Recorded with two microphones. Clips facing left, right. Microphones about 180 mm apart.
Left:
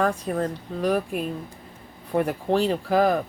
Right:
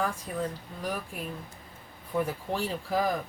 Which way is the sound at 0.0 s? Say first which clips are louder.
Left 7 dB; 75° left (ahead or behind).